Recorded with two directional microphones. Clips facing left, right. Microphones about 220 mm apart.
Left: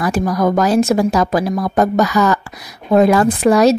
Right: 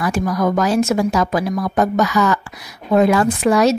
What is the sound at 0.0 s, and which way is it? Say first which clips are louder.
A woman's voice: left 2 dB; 35° left (ahead or behind).